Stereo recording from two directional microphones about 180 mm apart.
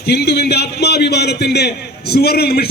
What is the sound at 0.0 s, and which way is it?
A man's voice, 65° left (ahead or behind).